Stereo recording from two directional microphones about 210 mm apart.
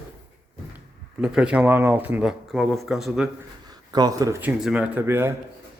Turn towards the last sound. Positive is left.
turn(degrees=-10)  # may be behind; listen again after turning